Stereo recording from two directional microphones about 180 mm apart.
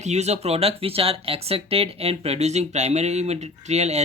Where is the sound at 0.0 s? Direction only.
40° right (ahead or behind).